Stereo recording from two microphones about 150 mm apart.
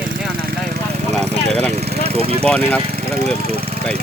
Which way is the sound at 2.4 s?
10° left (ahead or behind).